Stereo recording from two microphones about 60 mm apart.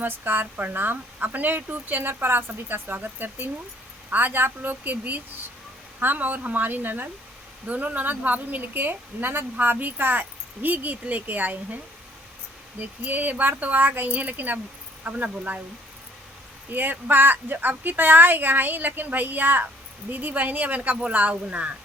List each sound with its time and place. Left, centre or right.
0.0 s a woman's voice: right
12.8 s a woman's voice: right
16.7 s a woman's voice: right
20.9 s a woman's voice: centre